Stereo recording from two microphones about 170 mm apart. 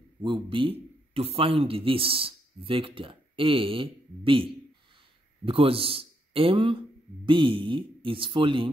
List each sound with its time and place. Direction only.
0.2 s a man's voice: 30° right (ahead or behind)